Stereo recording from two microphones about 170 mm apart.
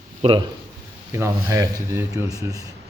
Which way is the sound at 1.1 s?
20° right (ahead or behind).